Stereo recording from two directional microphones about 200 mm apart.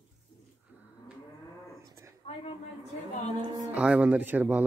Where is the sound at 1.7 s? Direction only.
15° right (ahead or behind).